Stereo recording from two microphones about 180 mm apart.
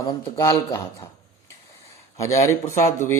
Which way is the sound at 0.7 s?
15° left (ahead or behind).